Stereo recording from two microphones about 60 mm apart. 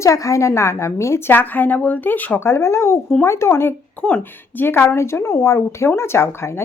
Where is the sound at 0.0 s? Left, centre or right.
Left.